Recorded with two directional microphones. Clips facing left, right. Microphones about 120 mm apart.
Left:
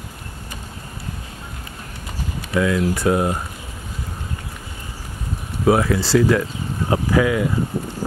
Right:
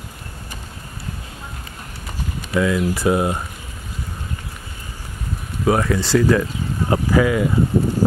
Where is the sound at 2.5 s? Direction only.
Centre (ahead or behind).